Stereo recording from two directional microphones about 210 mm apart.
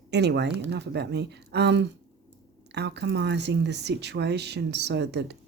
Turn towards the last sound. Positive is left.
turn(degrees=-55)  # may be behind; listen again after turning